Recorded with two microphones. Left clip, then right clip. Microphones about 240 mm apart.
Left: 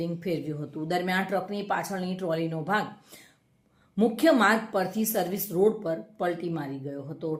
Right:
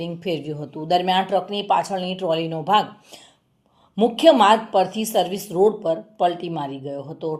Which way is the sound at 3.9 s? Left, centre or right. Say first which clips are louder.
Right 8 dB; right.